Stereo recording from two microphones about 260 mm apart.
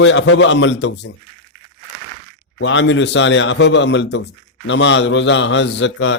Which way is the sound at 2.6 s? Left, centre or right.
Left.